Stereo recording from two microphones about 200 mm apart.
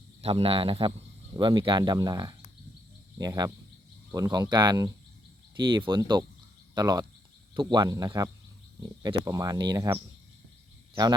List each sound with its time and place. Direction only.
0.2 s speech: 30° right (ahead or behind)